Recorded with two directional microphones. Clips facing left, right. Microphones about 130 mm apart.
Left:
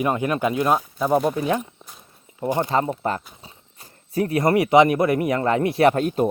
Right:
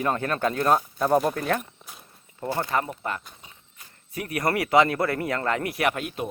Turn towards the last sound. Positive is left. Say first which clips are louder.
# left 9 dB
turn(degrees=35)  # may be behind; listen again after turning